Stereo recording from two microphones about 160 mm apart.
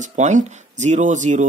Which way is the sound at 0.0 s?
50° right (ahead or behind).